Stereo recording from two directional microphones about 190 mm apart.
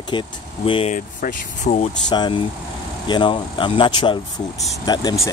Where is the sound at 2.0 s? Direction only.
25° left (ahead or behind).